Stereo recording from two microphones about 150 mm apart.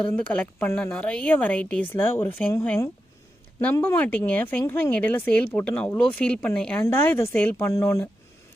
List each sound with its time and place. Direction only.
0.0 s speech: 10° left (ahead or behind)